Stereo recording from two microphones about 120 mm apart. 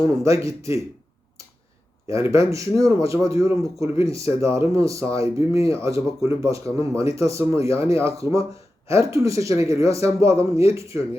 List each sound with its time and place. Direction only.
0.0 s a man's voice: 25° right (ahead or behind)
2.0 s a man's voice: 25° right (ahead or behind)